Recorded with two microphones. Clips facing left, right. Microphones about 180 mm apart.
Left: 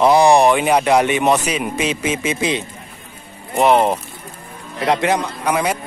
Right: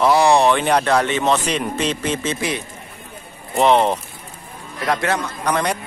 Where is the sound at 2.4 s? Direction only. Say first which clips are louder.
Left 4 dB; 20° left (ahead or behind).